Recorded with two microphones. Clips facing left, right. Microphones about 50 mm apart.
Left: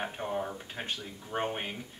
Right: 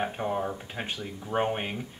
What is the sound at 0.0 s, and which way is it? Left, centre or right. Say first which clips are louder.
Speech: right 4 dB; centre.